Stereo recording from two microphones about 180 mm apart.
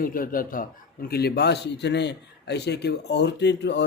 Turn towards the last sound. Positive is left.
turn(degrees=70)  # may be behind; listen again after turning